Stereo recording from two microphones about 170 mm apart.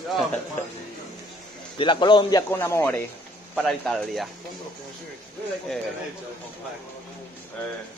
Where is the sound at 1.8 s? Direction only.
30° left (ahead or behind).